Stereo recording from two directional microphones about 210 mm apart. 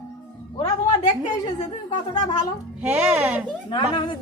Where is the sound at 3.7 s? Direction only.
20° left (ahead or behind).